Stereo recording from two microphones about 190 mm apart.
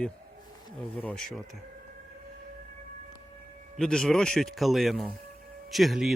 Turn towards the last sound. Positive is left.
turn(degrees=0)  # may be behind; listen again after turning